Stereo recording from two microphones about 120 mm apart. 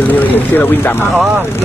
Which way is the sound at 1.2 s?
15° right (ahead or behind).